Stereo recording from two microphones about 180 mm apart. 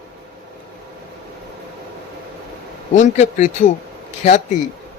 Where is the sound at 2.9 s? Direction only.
40° left (ahead or behind).